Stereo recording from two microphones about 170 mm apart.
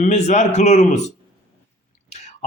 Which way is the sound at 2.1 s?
45° left (ahead or behind).